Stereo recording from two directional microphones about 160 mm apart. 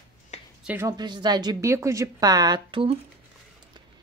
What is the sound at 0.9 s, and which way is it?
Speech, 25° right (ahead or behind).